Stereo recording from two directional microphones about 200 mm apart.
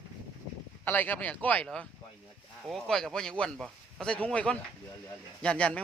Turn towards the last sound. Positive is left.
turn(degrees=5)  # may be behind; listen again after turning